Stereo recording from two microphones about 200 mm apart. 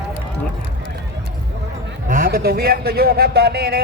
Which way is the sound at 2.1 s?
45° right (ahead or behind).